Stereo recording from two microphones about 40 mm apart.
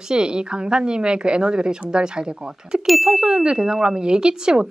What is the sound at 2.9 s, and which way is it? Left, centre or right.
Speech, centre.